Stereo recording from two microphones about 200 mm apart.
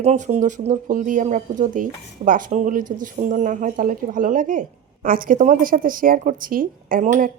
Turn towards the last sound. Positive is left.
turn(degrees=-40)  # may be behind; listen again after turning